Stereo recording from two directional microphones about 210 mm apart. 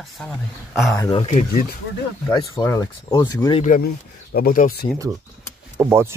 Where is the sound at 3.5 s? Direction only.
40° left (ahead or behind).